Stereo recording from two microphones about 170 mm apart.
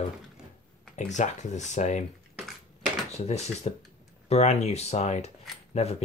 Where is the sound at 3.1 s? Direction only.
40° left (ahead or behind).